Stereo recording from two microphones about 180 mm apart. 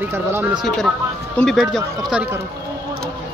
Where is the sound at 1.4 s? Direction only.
Centre (ahead or behind).